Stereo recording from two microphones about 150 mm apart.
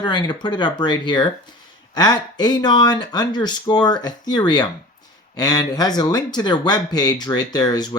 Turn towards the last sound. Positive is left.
turn(degrees=25)  # may be behind; listen again after turning